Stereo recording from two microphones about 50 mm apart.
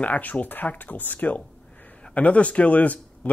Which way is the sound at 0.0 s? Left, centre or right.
Left.